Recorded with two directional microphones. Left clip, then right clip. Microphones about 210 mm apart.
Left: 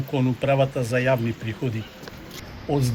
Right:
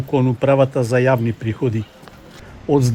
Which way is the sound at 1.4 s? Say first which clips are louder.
Right 7 dB; 25° right (ahead or behind).